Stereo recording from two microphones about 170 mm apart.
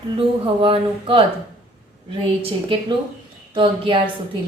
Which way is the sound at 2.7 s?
30° right (ahead or behind).